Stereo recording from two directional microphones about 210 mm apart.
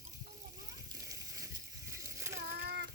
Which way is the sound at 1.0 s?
15° right (ahead or behind).